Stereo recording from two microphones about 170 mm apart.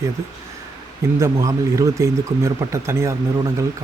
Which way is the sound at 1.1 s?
20° right (ahead or behind).